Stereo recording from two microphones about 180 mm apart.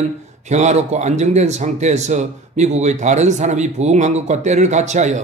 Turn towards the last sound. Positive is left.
turn(degrees=-40)  # may be behind; listen again after turning